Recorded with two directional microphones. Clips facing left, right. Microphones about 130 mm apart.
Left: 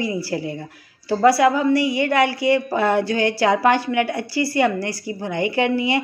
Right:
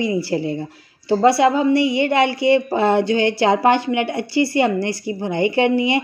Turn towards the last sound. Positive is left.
turn(degrees=-25)  # may be behind; listen again after turning